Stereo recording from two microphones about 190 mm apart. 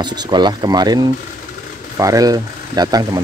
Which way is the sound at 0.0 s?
25° right (ahead or behind).